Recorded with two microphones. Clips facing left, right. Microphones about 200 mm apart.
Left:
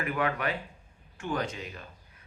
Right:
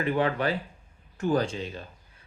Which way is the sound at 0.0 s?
30° right (ahead or behind).